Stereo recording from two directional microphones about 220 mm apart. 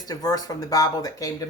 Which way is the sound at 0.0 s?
15° left (ahead or behind).